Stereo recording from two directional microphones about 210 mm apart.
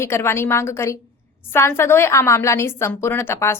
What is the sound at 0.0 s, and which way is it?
A woman's voice, 10° left (ahead or behind).